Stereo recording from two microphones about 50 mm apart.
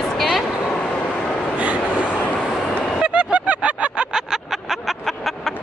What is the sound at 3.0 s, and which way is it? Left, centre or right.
Vehicle, centre.